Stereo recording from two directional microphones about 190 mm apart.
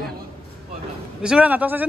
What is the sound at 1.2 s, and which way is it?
Speech, 5° right (ahead or behind).